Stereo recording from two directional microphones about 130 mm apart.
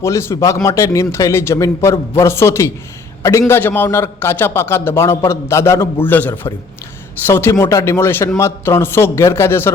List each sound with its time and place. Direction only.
0.0 s a man's voice: 20° left (ahead or behind)